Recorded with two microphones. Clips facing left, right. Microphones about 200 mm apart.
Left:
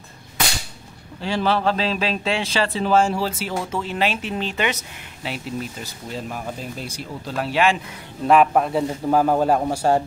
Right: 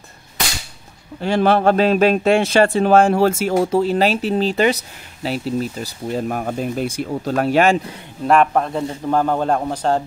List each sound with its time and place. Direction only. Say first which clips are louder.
1.2 s speech: right 6 dB; 50° right (ahead or behind); by 5.9 s 35° right (ahead or behind)
6.1 s speech: right 8 dB; 55° right (ahead or behind)
8.3 s a man's voice: even; 5° left (ahead or behind)